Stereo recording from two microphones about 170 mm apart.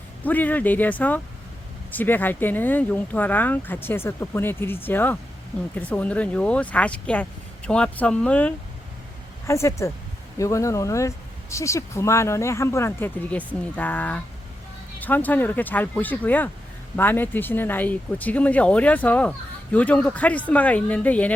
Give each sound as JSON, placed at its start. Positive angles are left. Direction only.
{"t": 0.3, "sound": "speech", "side_deg": 10}